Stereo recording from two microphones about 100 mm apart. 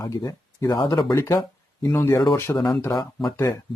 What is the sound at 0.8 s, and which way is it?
Speech, 45° left (ahead or behind).